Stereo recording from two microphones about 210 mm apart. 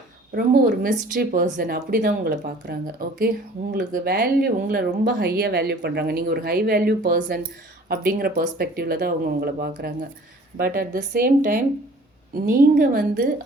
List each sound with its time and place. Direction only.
0.3 s speech: 40° right (ahead or behind)